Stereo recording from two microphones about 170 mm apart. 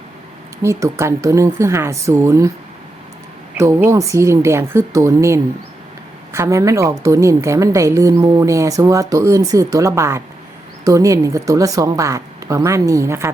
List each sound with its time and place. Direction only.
0.6 s speech: 15° right (ahead or behind)
3.6 s a woman's voice: 15° right (ahead or behind)